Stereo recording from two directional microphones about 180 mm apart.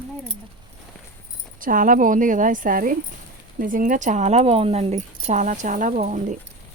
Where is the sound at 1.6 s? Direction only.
50° right (ahead or behind).